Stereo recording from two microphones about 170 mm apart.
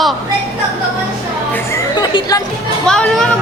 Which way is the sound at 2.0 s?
25° left (ahead or behind).